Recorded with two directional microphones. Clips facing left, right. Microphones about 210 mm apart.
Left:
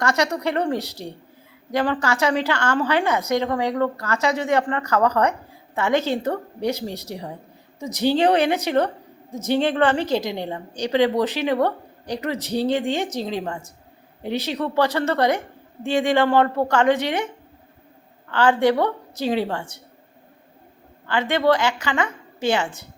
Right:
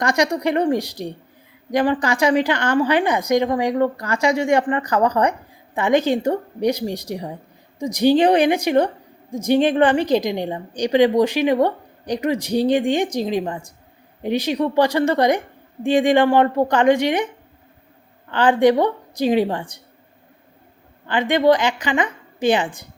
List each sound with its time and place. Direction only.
0.0 s a woman's voice: 15° right (ahead or behind)
18.3 s a woman's voice: 15° right (ahead or behind)
21.1 s a woman's voice: 15° right (ahead or behind)